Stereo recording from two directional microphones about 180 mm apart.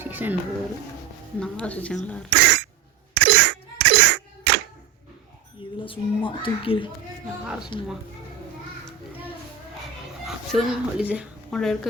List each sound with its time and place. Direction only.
0.0 s a sound: 10° right (ahead or behind)
1.4 s a woman's voice: 5° left (ahead or behind)
2.3 s cough: 75° right (ahead or behind)
3.2 s a sound: 75° right (ahead or behind)
5.8 s a child's voice: 30° left (ahead or behind)
10.2 s a woman's voice: centre (ahead or behind)